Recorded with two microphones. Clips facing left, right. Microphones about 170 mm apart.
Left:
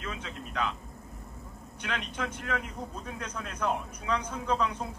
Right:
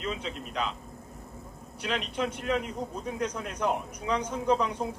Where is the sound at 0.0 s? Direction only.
30° right (ahead or behind).